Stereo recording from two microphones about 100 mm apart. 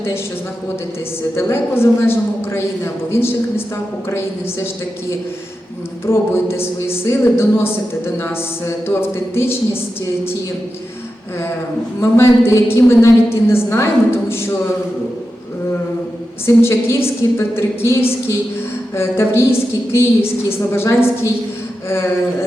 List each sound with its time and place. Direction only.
1.4 s speech: 25° left (ahead or behind)
6.1 s speech: 25° left (ahead or behind)
11.9 s speech: 25° left (ahead or behind)
16.6 s speech: 25° left (ahead or behind)